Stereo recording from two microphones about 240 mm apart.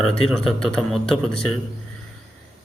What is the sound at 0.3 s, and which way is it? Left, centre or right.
Speech, centre.